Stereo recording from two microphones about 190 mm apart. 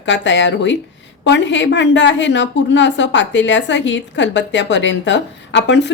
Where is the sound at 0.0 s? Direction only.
70° left (ahead or behind).